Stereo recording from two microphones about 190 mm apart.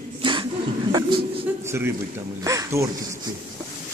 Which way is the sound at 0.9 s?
20° right (ahead or behind).